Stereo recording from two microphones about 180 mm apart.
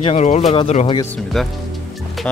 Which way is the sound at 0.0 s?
40° left (ahead or behind).